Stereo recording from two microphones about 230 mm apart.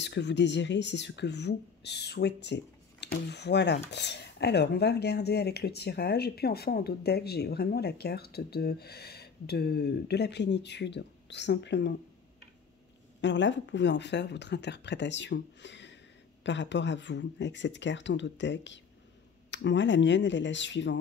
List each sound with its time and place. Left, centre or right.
0.0 s speech: left
13.2 s speech: left